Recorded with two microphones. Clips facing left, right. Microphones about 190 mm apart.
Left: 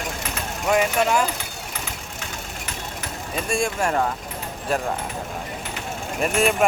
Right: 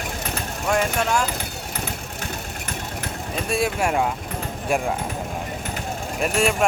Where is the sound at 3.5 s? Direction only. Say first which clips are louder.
Right 1 dB; 5° right (ahead or behind).